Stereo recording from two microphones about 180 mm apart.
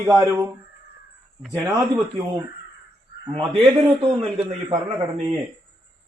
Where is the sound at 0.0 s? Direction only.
20° right (ahead or behind).